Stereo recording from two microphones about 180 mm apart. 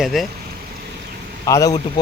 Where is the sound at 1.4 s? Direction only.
20° left (ahead or behind).